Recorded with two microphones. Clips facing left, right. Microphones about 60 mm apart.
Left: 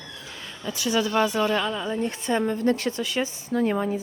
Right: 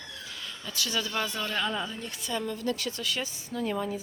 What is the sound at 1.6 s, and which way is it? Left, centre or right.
Speech, centre.